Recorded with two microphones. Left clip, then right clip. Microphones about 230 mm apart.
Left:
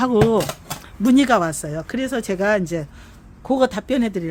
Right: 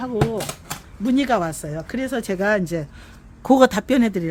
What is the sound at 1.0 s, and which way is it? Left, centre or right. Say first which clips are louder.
Speech: left 4 dB; left.